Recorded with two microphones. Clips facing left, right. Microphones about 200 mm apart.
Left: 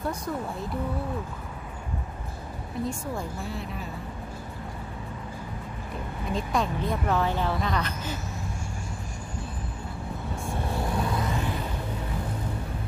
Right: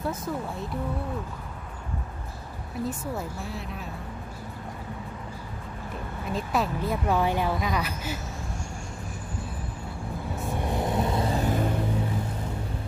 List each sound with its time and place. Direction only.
0.0 s speech: centre (ahead or behind)
2.8 s speech: 5° right (ahead or behind)
6.3 s speech: 5° right (ahead or behind)
10.6 s vehicle: 20° right (ahead or behind); by 11.6 s 40° right (ahead or behind)